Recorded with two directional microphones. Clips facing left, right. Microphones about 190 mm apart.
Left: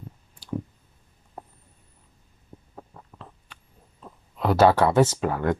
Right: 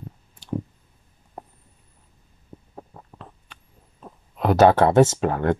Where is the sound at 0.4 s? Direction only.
20° right (ahead or behind).